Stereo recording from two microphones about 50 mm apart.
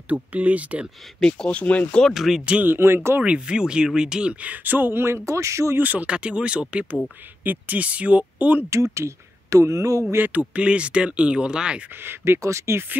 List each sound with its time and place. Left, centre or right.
0.1 s speech: right
1.2 s speech: left
2.1 s speech: centre
2.6 s speech: right
3.2 s speech: right
4.6 s speech: right
5.8 s speech: right
6.0 s speech: right
7.4 s speech: right
8.6 s speech: right
10.1 s speech: right
10.5 s speech: right
12.0 s speech: right
12.4 s speech: right